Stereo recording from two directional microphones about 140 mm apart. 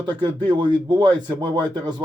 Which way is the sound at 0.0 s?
35° right (ahead or behind).